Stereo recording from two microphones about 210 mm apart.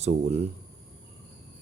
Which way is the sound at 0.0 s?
30° right (ahead or behind).